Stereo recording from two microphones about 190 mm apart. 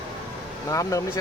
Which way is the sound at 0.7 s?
15° left (ahead or behind).